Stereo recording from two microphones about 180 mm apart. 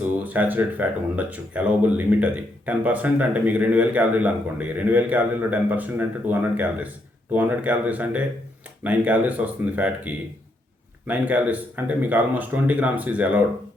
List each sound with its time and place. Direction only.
0.3 s speech: 10° right (ahead or behind)